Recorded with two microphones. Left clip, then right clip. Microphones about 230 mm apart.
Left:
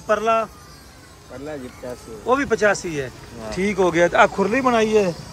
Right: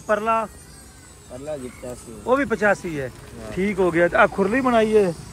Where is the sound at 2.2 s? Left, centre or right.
Centre.